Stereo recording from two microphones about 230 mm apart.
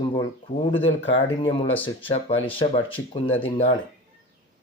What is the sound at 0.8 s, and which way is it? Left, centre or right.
Speech, left.